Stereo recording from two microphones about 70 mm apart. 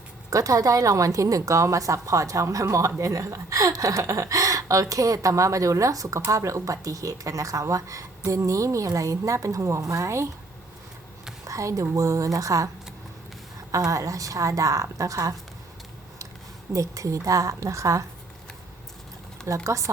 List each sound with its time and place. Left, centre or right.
0.3 s speech: right
11.4 s speech: right
16.7 s speech: right
19.5 s speech: right